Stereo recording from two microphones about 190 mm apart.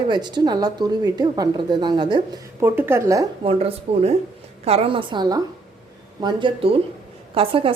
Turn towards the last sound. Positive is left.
turn(degrees=-30)  # may be behind; listen again after turning